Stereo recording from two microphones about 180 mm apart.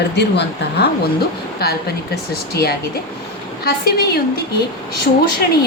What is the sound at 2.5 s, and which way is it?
Speech, 60° left (ahead or behind).